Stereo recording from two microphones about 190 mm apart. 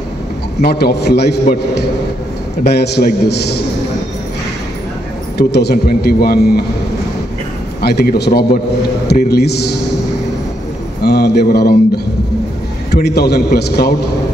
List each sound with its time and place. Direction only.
0.6 s a man's voice: 55° left (ahead or behind)
5.5 s a man's voice: 60° left (ahead or behind)
7.8 s a man's voice: 55° left (ahead or behind)
11.1 s a man's voice: 60° left (ahead or behind)